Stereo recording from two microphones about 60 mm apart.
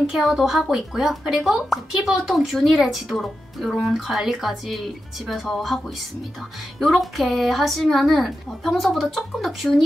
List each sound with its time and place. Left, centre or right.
0.1 s speech: centre
6.8 s speech: centre